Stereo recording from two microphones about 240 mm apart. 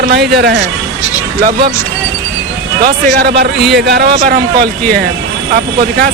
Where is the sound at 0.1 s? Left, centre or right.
Right.